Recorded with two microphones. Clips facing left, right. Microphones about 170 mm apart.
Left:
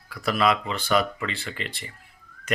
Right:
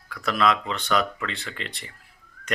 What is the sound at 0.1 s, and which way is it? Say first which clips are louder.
Speech: even; 5° left (ahead or behind).